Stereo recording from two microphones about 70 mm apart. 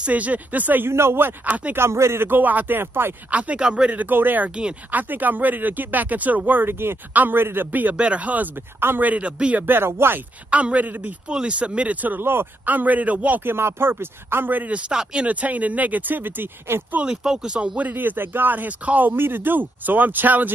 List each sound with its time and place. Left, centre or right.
0.0 s speech: right
1.8 s speech: right
3.3 s speech: centre
4.6 s speech: centre
5.1 s speech: right
8.7 s speech: right
9.7 s speech: right
10.5 s speech: centre
13.5 s speech: right
14.9 s speech: centre
15.2 s speech: right
17.0 s speech: centre
17.7 s speech: right